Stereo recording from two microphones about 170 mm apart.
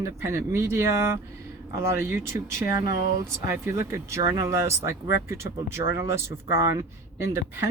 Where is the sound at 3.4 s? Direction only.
15° right (ahead or behind).